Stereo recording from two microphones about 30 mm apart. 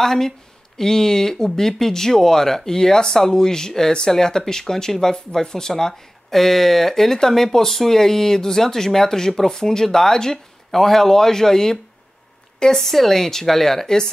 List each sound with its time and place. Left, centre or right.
0.0 s speech: centre
6.3 s speech: centre
12.9 s speech: centre